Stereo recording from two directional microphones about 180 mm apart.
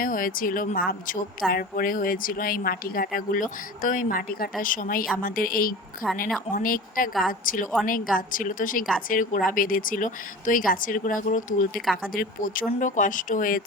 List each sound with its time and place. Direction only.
0.0 s a woman's voice: 50° left (ahead or behind)
7.1 s a woman's voice: centre (ahead or behind)
7.4 s a woman's voice: 50° left (ahead or behind)